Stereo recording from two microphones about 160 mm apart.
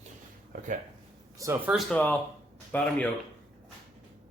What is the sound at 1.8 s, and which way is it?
Speech, 5° left (ahead or behind).